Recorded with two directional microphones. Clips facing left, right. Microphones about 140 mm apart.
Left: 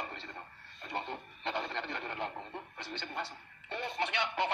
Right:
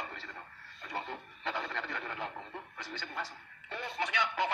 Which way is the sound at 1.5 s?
25° left (ahead or behind).